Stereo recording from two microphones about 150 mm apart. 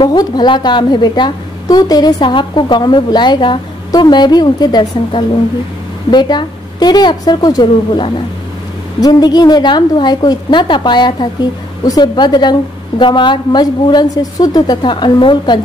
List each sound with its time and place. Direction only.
0.0 s a woman's voice: 30° left (ahead or behind)